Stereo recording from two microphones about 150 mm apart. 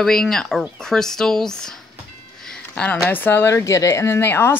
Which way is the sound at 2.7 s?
5° left (ahead or behind).